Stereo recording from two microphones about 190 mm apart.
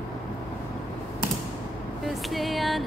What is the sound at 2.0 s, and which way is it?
Female singing, centre (ahead or behind).